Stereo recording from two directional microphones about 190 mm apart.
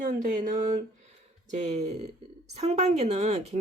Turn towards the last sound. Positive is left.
turn(degrees=-35)  # may be behind; listen again after turning